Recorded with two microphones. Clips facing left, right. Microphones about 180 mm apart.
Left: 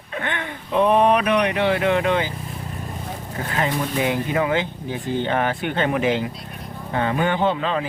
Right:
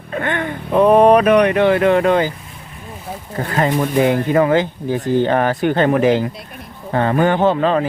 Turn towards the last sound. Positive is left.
turn(degrees=-45)  # may be behind; listen again after turning